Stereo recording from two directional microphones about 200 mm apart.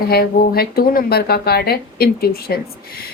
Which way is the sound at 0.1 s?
50° left (ahead or behind).